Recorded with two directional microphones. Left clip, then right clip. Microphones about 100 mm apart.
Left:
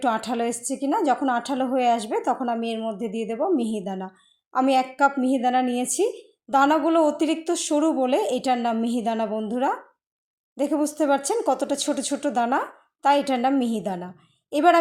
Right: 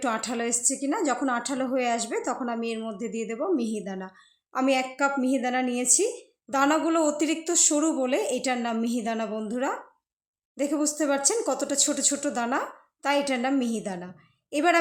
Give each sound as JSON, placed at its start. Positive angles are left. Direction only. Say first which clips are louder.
{"t": 0.0, "sound": "a woman's voice", "louder": "left 4 dB", "side_deg": 25}